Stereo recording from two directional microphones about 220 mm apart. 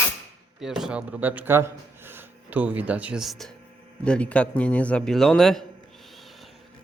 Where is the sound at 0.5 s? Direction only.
Centre (ahead or behind).